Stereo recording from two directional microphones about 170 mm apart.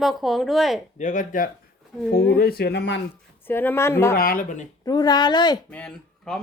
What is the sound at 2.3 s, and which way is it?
Speech, 65° left (ahead or behind).